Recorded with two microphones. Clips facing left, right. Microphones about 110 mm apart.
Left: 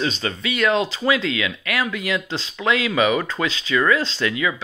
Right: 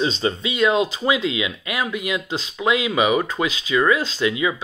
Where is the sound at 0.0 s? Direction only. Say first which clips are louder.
Right 3 dB; 25° right (ahead or behind).